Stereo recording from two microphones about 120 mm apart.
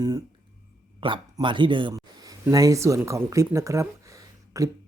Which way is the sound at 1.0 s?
45° right (ahead or behind).